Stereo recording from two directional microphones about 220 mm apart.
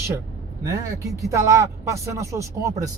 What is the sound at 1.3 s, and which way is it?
Speech, 15° right (ahead or behind).